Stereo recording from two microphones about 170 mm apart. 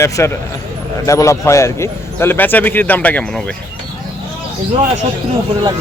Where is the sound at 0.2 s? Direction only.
15° left (ahead or behind).